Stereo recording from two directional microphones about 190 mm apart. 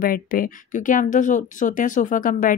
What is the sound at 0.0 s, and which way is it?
Speech, 50° left (ahead or behind).